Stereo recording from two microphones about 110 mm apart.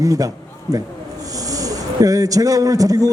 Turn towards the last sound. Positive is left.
turn(degrees=-35)  # may be behind; listen again after turning